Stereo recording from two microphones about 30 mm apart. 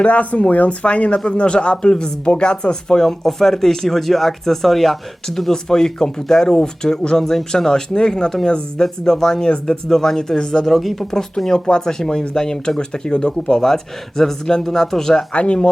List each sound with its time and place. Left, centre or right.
0.0 s speech: left
0.9 s speech: left
3.0 s speech: centre
10.7 s speech: centre
11.1 s speech: centre
13.6 s speech: centre
15.3 s speech: left